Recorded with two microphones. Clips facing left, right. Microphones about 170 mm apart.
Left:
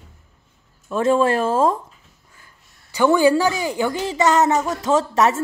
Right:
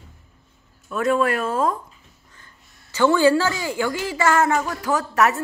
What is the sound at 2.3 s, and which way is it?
Speech, 10° left (ahead or behind).